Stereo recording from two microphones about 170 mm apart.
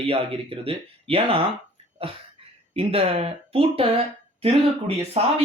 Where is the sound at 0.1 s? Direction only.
35° right (ahead or behind).